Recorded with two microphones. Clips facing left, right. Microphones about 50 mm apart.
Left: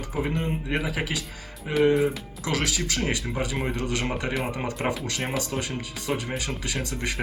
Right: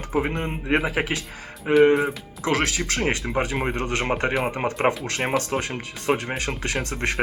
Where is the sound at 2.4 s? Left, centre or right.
Right.